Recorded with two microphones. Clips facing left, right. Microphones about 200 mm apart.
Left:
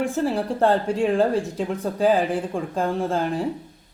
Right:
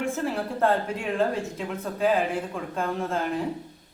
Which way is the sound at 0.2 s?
35° left (ahead or behind).